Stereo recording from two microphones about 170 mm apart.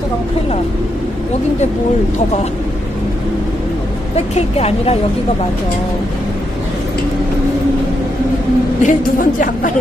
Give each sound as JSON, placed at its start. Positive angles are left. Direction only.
{"t": 4.4, "sound": "speech", "side_deg": 35}
{"t": 8.8, "sound": "a woman's voice", "side_deg": 50}